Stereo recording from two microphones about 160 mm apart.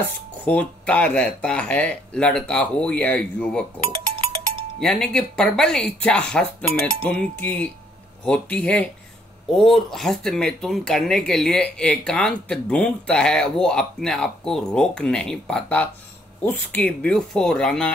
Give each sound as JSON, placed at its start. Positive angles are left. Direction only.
{"t": 0.5, "sound": "speech", "side_deg": 10}
{"t": 3.9, "sound": "music", "side_deg": -35}
{"t": 4.7, "sound": "speech", "side_deg": 5}